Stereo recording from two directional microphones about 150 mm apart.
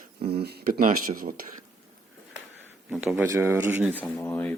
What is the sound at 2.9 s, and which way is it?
Speech, 5° right (ahead or behind).